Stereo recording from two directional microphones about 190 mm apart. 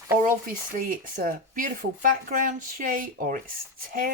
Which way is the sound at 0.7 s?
45° right (ahead or behind).